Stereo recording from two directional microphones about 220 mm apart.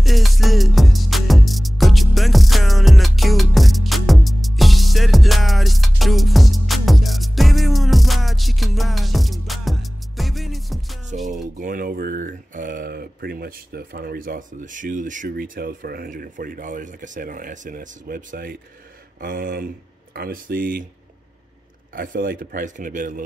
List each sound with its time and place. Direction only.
0.0 s music: centre (ahead or behind)
11.5 s speech: 40° right (ahead or behind)
21.9 s speech: 40° right (ahead or behind)